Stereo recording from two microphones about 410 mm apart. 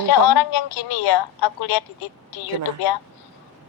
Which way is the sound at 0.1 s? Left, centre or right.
Left.